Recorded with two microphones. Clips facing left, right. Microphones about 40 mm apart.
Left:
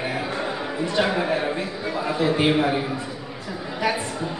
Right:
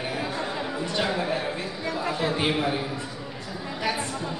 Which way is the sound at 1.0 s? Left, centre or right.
Left.